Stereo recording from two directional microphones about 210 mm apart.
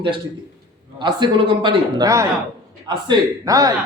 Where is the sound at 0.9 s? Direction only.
20° right (ahead or behind).